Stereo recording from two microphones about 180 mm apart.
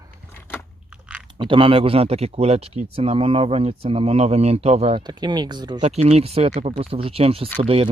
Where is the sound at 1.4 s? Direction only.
30° right (ahead or behind).